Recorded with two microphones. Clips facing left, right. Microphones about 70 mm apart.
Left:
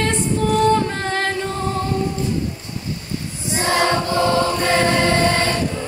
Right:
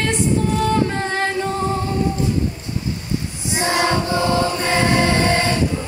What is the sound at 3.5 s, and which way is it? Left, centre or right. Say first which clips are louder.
Choir: left 1 dB; right.